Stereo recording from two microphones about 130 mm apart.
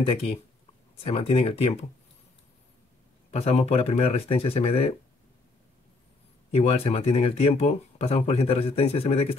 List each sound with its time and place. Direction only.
0.9 s speech: 50° left (ahead or behind)
3.3 s speech: 50° left (ahead or behind)
6.5 s speech: 50° left (ahead or behind)